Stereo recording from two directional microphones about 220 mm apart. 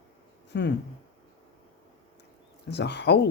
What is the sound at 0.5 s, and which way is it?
Speech, 50° left (ahead or behind).